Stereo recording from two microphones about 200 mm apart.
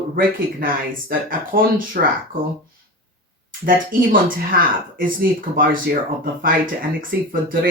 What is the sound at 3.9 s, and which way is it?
Speech, 45° right (ahead or behind).